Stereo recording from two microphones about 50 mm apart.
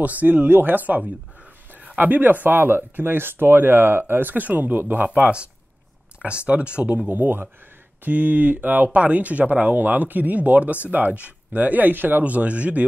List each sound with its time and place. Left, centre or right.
0.0 s speech: right
6.2 s speech: right
7.1 s speech: right